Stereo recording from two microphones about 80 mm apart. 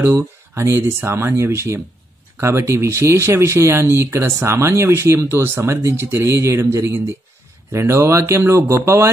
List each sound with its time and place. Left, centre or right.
0.6 s speech: right